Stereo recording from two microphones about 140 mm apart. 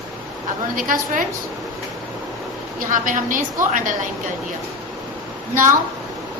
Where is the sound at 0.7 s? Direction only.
75° right (ahead or behind).